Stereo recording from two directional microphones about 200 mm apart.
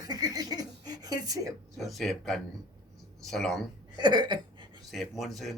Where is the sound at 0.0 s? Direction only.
20° right (ahead or behind).